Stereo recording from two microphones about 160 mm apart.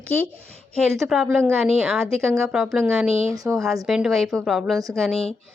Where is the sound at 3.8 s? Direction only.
5° right (ahead or behind).